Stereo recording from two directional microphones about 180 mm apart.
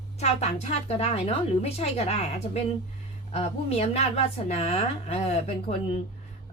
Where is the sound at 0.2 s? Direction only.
35° left (ahead or behind).